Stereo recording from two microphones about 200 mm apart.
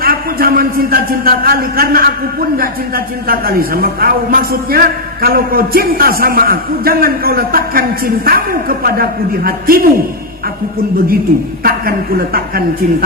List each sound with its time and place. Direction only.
0.0 s a woman's voice: 45° right (ahead or behind)
11.6 s a woman's voice: 50° right (ahead or behind)